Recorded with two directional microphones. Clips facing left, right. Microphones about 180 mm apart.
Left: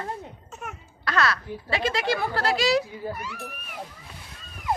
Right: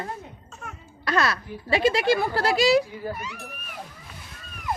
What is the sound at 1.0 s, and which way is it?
Speech, 15° right (ahead or behind).